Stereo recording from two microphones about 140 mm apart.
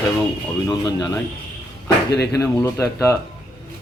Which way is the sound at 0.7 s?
25° left (ahead or behind).